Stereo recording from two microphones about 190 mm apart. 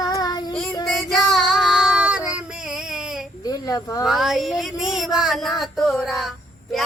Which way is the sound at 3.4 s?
20° left (ahead or behind).